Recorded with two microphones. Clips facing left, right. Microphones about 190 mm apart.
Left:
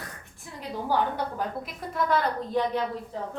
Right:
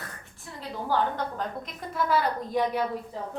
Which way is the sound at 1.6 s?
5° right (ahead or behind).